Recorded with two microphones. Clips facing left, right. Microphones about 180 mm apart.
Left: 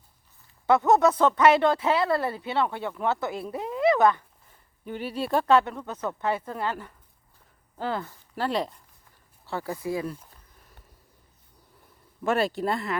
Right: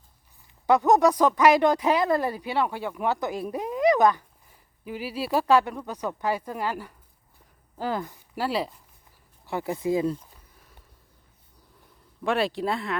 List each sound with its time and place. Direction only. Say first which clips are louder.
0.7 s speech: right 1 dB; 15° right (ahead or behind)
4.9 s speech: even; 5° right (ahead or behind)
9.5 s speech: right 4 dB; 20° right (ahead or behind)
12.2 s speech: even; centre (ahead or behind)